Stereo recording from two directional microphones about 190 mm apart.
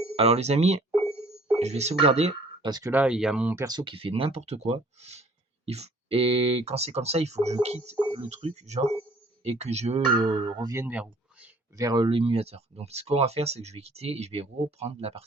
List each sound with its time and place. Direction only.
0.0 s speech: 30° right (ahead or behind)
2.6 s speech: 20° right (ahead or behind)
2.9 s speech: 5° right (ahead or behind)
11.8 s speech: 20° right (ahead or behind)